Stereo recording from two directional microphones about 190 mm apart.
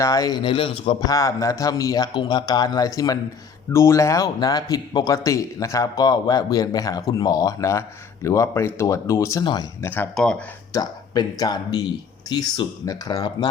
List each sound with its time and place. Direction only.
0.0 s a man's voice: 20° left (ahead or behind)
9.8 s a man's voice: 10° left (ahead or behind)
10.7 s speech: 20° left (ahead or behind)